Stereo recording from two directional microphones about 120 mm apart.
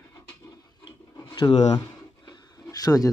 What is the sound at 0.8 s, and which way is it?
Rub, 40° left (ahead or behind).